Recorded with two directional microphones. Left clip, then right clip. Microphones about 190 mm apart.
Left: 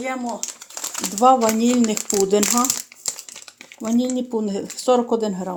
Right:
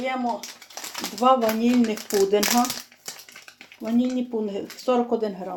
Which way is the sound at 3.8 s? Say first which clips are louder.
Left 3 dB; 55° left (ahead or behind).